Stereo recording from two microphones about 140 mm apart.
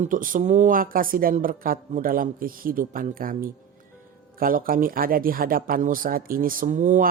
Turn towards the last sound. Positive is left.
turn(degrees=-65)  # may be behind; listen again after turning